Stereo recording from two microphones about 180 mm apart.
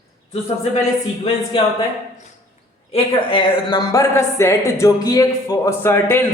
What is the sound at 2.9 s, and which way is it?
A woman's voice, 30° left (ahead or behind).